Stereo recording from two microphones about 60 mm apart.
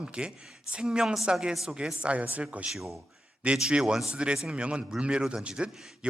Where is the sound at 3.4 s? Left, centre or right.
Centre.